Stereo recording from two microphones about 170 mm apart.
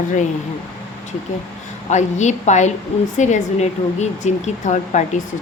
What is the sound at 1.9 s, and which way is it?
Speech, 45° left (ahead or behind).